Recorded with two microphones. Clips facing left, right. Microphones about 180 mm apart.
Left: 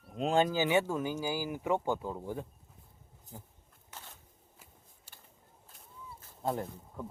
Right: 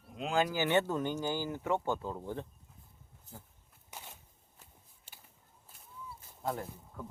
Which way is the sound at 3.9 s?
10° right (ahead or behind).